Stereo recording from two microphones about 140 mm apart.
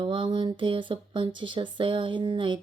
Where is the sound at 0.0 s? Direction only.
35° right (ahead or behind).